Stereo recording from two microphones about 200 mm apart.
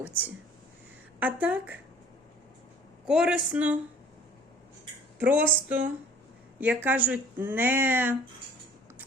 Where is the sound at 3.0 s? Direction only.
5° right (ahead or behind).